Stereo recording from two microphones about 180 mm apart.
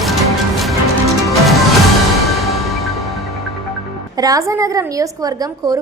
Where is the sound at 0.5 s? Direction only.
Centre (ahead or behind).